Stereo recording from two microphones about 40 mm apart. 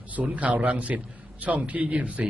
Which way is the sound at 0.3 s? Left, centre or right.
Right.